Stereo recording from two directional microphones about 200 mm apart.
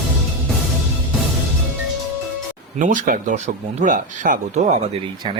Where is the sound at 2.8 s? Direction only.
40° right (ahead or behind).